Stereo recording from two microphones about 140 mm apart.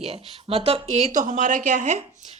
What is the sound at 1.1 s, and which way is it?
Speech, 65° right (ahead or behind).